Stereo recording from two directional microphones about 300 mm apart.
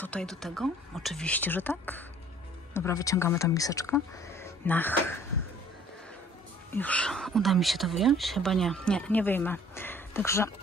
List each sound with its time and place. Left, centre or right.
0.0 s speech: centre
6.7 s speech: centre